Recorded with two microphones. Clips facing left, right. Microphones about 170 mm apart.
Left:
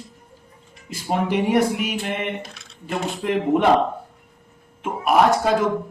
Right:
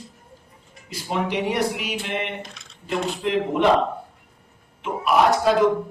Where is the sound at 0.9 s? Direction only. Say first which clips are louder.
Left 3 dB; 50° left (ahead or behind).